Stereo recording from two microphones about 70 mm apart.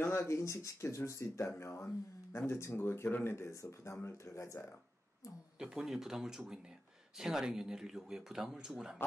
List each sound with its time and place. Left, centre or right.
0.0 s speech: left
5.6 s speech: centre